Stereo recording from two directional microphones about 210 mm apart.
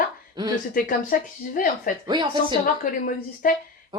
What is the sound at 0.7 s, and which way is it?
Speech, 40° left (ahead or behind).